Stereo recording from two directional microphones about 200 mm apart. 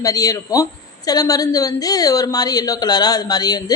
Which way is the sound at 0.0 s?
15° left (ahead or behind).